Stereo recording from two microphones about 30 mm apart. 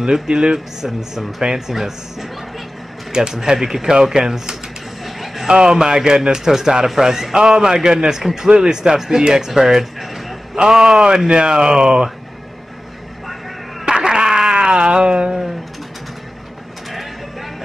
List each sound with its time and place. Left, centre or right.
0.1 s speech: right
1.4 s speech: centre
3.8 s speech: right
5.0 s a sound: centre
5.5 s speech: right
11.2 s speech: right
13.8 s a sound: right